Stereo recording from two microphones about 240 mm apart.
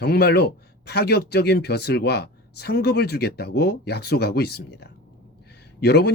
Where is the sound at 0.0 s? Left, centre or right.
Left.